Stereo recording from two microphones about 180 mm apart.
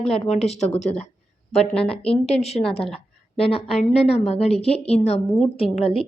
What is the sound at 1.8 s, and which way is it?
Speech, 35° left (ahead or behind).